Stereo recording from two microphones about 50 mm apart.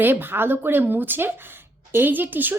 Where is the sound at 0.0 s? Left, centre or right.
Right.